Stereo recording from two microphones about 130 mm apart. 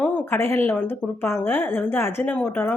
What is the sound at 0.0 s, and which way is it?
A woman's voice, 15° left (ahead or behind).